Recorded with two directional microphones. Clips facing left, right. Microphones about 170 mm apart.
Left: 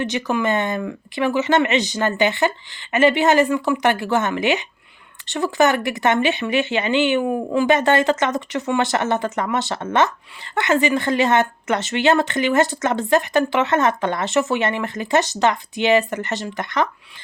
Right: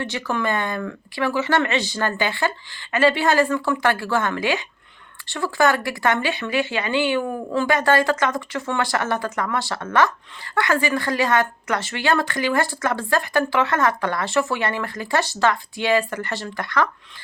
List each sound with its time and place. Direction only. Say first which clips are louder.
0.0 s speech: left 3 dB; 20° left (ahead or behind)